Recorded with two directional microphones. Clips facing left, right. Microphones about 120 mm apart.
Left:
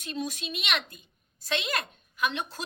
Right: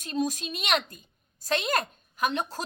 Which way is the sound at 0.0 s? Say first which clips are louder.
Right 5 dB; 40° right (ahead or behind).